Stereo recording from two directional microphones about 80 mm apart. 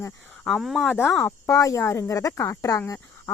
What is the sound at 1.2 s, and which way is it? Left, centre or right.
Speech, left.